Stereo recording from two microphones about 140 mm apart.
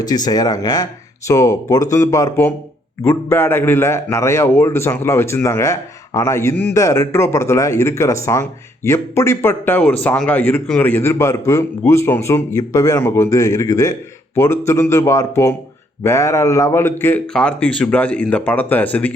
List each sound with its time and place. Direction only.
0.0 s a man's voice: 25° left (ahead or behind); by 19.1 s 10° left (ahead or behind)